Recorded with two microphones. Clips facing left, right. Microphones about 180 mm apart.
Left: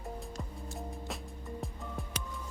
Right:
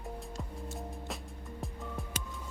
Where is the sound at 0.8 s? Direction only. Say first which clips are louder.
Left 3 dB; centre (ahead or behind).